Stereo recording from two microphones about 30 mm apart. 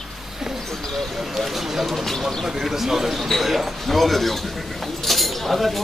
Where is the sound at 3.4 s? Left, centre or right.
Centre.